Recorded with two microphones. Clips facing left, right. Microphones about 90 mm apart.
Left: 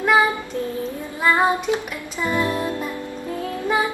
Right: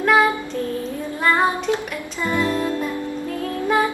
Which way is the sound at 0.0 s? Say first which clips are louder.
Right 1 dB; 10° left (ahead or behind).